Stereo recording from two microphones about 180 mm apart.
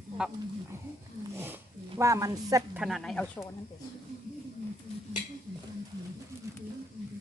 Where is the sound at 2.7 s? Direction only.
Centre (ahead or behind).